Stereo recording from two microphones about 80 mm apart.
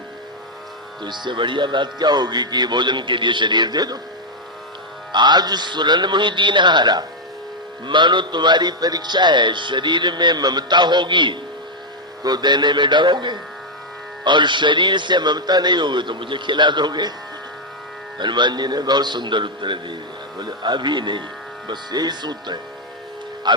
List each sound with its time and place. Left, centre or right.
1.0 s a man's voice: right
5.1 s a man's voice: right
12.2 s a man's voice: right
18.2 s a man's voice: right
20.4 s a man's voice: right
21.7 s a man's voice: right